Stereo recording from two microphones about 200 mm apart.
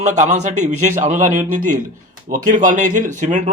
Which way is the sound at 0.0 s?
35° right (ahead or behind).